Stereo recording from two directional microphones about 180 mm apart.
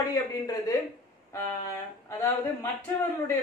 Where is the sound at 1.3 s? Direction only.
15° left (ahead or behind).